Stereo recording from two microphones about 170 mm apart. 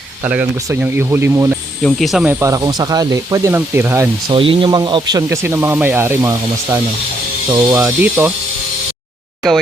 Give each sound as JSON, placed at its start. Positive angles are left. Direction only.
{"t": 0.3, "sound": "speech", "side_deg": -10}
{"t": 1.8, "sound": "speech", "side_deg": 0}
{"t": 2.3, "sound": "speech", "side_deg": -20}
{"t": 4.3, "sound": "speech", "side_deg": -30}